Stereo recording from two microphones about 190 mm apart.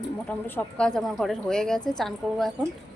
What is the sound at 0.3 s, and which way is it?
A woman's voice, 10° left (ahead or behind).